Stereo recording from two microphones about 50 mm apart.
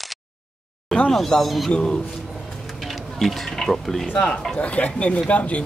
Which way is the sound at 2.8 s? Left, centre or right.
Centre.